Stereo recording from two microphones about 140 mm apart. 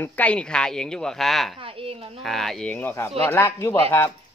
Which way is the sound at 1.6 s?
40° right (ahead or behind).